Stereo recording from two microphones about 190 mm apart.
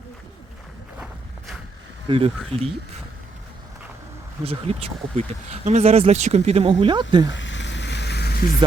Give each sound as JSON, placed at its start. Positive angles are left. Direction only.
{"t": 2.0, "sound": "speech", "side_deg": -30}
{"t": 2.5, "sound": "speech", "side_deg": 5}
{"t": 4.4, "sound": "speech", "side_deg": -30}
{"t": 7.3, "sound": "a sound", "side_deg": 75}